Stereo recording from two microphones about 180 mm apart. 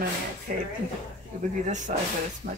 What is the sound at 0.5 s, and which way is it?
Speech, 50° right (ahead or behind).